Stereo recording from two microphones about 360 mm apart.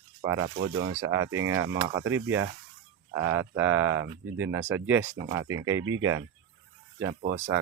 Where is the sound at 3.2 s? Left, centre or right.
Centre.